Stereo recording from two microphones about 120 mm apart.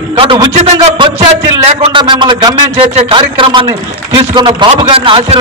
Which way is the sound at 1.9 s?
40° right (ahead or behind).